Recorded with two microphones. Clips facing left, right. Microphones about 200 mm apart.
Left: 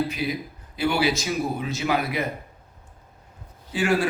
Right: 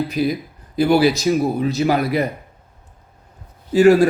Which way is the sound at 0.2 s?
40° right (ahead or behind).